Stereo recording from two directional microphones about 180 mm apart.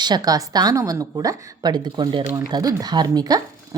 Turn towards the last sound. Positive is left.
turn(degrees=-20)  # may be behind; listen again after turning